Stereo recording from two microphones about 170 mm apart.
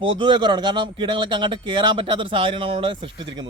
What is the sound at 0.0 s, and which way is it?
A man's voice, 30° right (ahead or behind).